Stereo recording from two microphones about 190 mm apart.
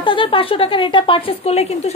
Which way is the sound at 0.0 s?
25° left (ahead or behind).